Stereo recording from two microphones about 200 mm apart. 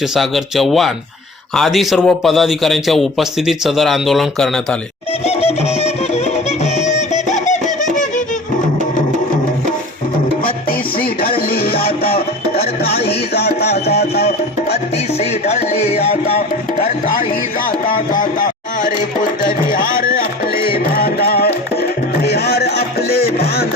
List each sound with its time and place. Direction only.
0.1 s speech: centre (ahead or behind)
5.2 s music: 30° left (ahead or behind)
10.4 s music: 45° left (ahead or behind)
15.2 s music: 30° left (ahead or behind)
17.7 s music: 40° left (ahead or behind)